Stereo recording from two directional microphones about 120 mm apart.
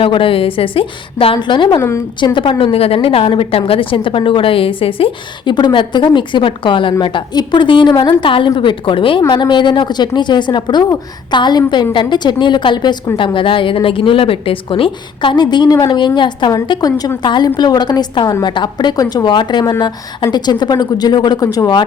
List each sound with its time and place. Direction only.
0.0 s a woman's voice: 50° left (ahead or behind)